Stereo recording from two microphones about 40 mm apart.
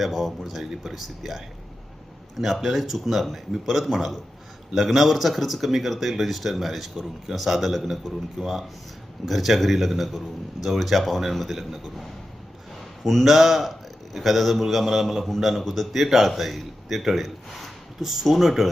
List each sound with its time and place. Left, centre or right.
0.0 s a man's voice: centre
2.4 s a man's voice: centre